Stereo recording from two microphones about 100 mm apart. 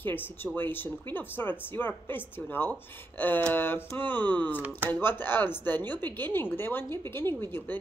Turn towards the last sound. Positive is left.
turn(degrees=20)  # may be behind; listen again after turning